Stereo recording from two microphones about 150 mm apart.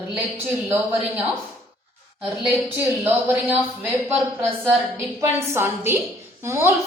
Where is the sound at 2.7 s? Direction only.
15° right (ahead or behind).